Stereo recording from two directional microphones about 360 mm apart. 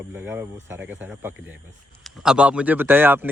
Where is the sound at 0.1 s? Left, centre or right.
Centre.